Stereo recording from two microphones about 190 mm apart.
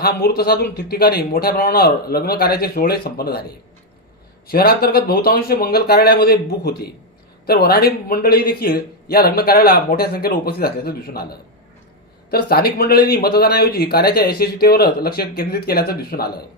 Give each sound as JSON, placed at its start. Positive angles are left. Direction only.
{"t": 0.0, "sound": "a man's voice", "side_deg": 55}
{"t": 4.4, "sound": "a man's voice", "side_deg": 55}